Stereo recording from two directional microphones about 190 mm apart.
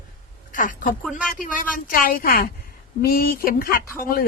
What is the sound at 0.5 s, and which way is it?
A woman's voice, 45° left (ahead or behind).